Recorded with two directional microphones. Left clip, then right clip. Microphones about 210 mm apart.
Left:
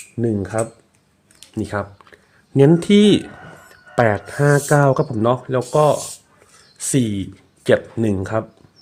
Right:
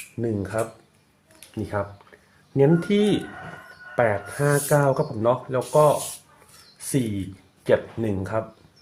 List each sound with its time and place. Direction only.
0.2 s speech: 50° left (ahead or behind)